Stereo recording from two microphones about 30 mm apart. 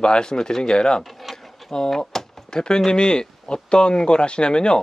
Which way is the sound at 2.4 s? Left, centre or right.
Left.